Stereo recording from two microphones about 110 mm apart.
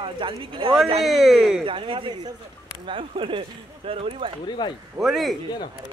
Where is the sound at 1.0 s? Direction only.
Centre (ahead or behind).